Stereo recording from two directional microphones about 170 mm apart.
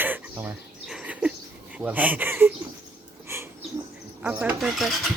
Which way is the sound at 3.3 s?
15° right (ahead or behind).